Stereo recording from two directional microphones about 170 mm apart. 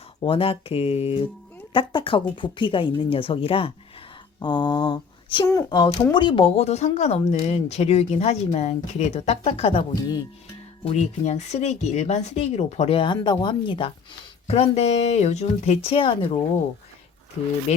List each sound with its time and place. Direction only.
0.2 s speech: 35° left (ahead or behind)
4.4 s a sound: 25° left (ahead or behind)
5.5 s speech: 20° left (ahead or behind)
10.8 s speech: 40° left (ahead or behind)